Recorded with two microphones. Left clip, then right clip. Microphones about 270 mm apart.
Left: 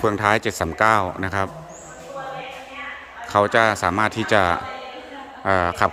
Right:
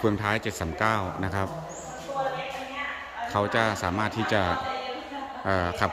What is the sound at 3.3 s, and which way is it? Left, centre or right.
Speech, centre.